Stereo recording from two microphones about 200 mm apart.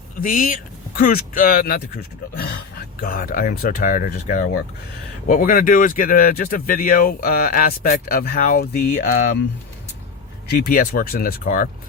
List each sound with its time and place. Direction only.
0.2 s speech: 40° left (ahead or behind)
10.5 s speech: 50° left (ahead or behind)